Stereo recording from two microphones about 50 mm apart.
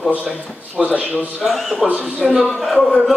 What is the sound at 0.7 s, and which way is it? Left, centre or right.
Speech, right.